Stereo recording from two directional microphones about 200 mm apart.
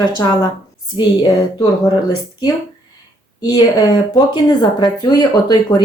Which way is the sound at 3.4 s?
20° left (ahead or behind).